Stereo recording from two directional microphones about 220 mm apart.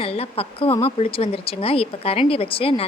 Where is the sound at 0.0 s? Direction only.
25° left (ahead or behind).